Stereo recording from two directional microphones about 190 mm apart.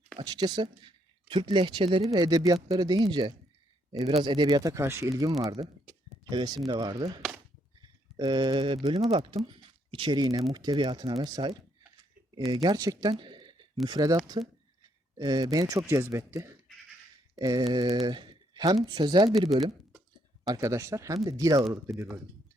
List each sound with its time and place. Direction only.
0.2 s speech: 25° right (ahead or behind)
12.6 s speech: 20° right (ahead or behind)
15.2 s speech: 20° right (ahead or behind)
20.5 s speech: 15° right (ahead or behind)